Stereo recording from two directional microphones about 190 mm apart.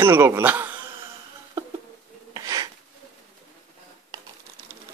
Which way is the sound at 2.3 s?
20° right (ahead or behind).